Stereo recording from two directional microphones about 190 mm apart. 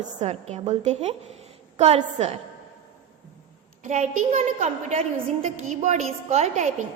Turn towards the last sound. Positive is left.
turn(degrees=-40)  # may be behind; listen again after turning